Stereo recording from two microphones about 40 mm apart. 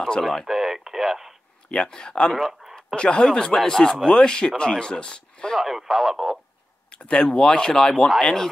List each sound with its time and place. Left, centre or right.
0.2 s speech: centre
0.5 s radio: centre
1.7 s speech: centre
5.6 s speech: centre
6.9 s speech: left